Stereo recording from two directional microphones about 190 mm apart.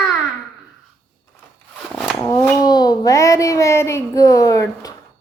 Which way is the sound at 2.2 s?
20° left (ahead or behind).